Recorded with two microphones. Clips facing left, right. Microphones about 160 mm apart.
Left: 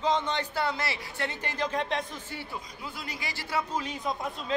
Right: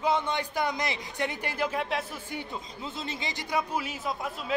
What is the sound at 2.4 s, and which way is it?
A man's voice, 20° right (ahead or behind).